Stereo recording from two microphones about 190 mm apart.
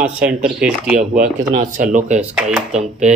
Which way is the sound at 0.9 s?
40° right (ahead or behind).